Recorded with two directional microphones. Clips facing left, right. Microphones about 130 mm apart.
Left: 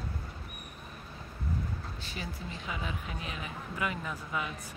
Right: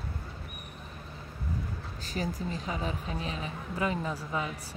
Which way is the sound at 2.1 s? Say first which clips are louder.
Right 9 dB; 40° right (ahead or behind).